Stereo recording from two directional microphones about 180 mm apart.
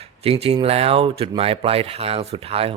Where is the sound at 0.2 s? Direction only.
35° right (ahead or behind).